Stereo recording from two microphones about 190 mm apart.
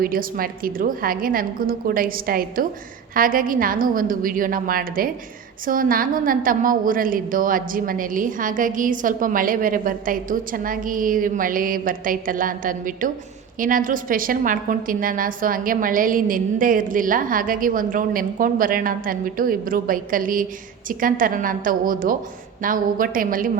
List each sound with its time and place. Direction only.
0.0 s a woman's voice: 50° right (ahead or behind)